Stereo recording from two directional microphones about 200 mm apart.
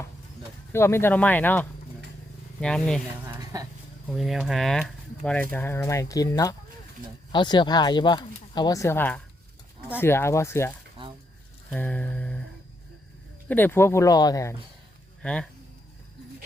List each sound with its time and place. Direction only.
0.7 s speech: 10° left (ahead or behind)
3.5 s a sound: 20° right (ahead or behind)
4.1 s speech: centre (ahead or behind)
11.7 s a sound: 5° left (ahead or behind)
13.5 s speech: 10° left (ahead or behind)
15.2 s speech: 5° left (ahead or behind)